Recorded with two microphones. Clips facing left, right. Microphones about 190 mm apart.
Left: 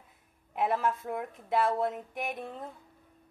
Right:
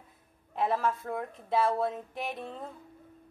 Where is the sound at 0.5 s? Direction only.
15° left (ahead or behind).